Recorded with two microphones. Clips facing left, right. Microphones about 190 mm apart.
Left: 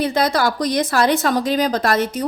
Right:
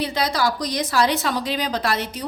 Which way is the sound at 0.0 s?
50° left (ahead or behind).